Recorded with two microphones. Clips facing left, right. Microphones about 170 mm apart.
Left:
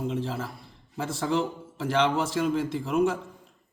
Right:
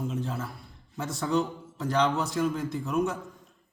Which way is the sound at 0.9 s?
30° left (ahead or behind).